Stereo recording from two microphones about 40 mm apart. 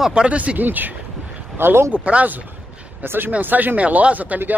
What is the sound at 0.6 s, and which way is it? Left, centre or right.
Speech, right.